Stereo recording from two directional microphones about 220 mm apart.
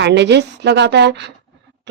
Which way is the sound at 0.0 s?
50° right (ahead or behind).